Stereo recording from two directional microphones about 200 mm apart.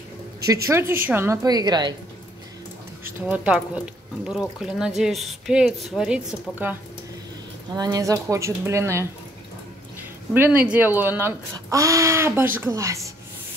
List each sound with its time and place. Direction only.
0.7 s a woman's voice: 15° right (ahead or behind)
3.3 s speech: 5° right (ahead or behind)
7.7 s speech: 20° right (ahead or behind)
10.3 s speech: 10° right (ahead or behind)